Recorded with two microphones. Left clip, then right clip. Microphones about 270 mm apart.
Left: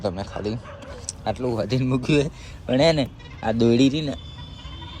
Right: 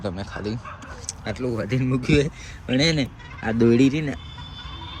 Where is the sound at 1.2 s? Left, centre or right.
Centre.